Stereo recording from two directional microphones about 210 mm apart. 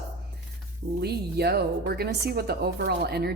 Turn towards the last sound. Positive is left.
turn(degrees=-50)  # may be behind; listen again after turning